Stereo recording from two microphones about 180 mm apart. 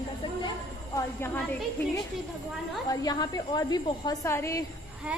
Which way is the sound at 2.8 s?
20° left (ahead or behind).